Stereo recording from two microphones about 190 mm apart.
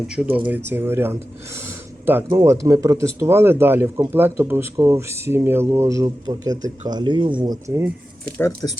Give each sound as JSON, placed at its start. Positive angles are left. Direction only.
{"t": 0.1, "sound": "speech", "side_deg": -5}
{"t": 1.5, "sound": "a sound", "side_deg": -10}
{"t": 2.3, "sound": "speech", "side_deg": -15}
{"t": 8.4, "sound": "speech", "side_deg": 15}